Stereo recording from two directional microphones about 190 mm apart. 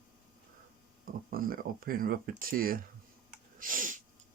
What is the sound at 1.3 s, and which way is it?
Speech, 50° right (ahead or behind).